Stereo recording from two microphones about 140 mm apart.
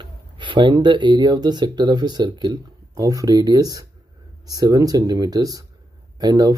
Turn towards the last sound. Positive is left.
turn(degrees=-25)  # may be behind; listen again after turning